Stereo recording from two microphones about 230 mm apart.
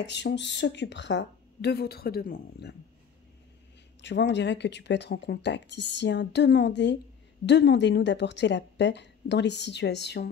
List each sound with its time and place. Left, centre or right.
0.0 s speech: left
4.0 s speech: left